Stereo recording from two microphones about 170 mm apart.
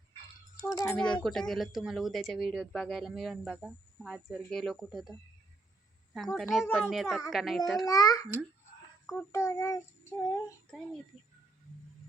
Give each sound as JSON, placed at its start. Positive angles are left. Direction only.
{"t": 0.6, "sound": "child singing", "side_deg": 15}
{"t": 0.9, "sound": "speech", "side_deg": 5}
{"t": 6.1, "sound": "speech", "side_deg": 0}
{"t": 7.9, "sound": "a child's voice", "side_deg": 20}
{"t": 9.0, "sound": "child singing", "side_deg": 15}